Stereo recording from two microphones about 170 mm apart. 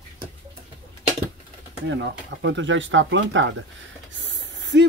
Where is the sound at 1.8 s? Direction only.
90° right.